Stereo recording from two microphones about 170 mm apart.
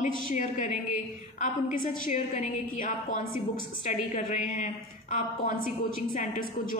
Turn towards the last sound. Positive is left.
turn(degrees=45)  # may be behind; listen again after turning